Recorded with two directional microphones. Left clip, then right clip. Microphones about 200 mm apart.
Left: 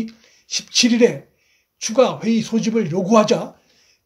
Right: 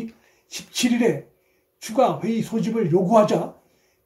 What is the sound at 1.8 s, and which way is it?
A man's voice, 30° left (ahead or behind).